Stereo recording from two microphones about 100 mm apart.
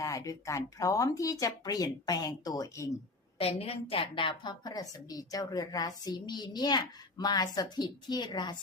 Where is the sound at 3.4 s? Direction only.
85° left.